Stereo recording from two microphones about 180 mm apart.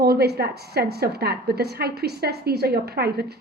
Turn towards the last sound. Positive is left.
turn(degrees=-60)  # may be behind; listen again after turning